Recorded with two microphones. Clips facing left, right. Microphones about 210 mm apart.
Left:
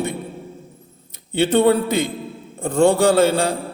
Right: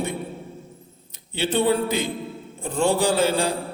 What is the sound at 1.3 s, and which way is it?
A man's voice, 60° left (ahead or behind).